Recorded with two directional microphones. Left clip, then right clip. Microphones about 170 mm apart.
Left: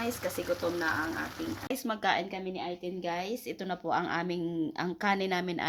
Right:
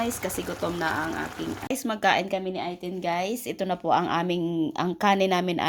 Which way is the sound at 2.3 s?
50° right (ahead or behind).